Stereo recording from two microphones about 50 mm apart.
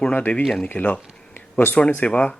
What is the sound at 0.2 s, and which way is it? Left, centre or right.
Speech, left.